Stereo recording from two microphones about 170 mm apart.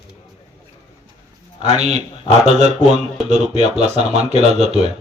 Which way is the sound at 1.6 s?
40° right (ahead or behind).